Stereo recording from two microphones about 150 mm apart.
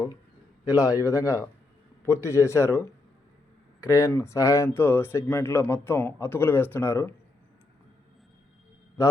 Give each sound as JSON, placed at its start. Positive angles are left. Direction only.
{"t": 0.6, "sound": "speech", "side_deg": 25}